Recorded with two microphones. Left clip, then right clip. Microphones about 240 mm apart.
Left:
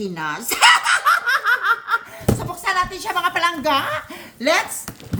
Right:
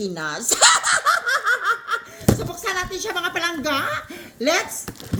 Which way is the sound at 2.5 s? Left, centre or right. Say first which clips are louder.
Left 4 dB; centre.